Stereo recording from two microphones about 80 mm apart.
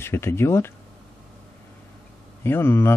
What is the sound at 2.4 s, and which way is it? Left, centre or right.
Speech, left.